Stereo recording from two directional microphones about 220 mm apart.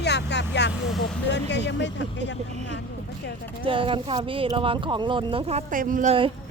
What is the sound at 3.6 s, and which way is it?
Speech, 25° right (ahead or behind).